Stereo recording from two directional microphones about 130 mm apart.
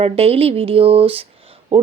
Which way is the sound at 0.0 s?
50° right (ahead or behind).